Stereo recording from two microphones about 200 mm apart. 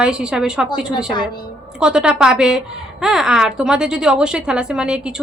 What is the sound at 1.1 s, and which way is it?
Speech, 20° left (ahead or behind).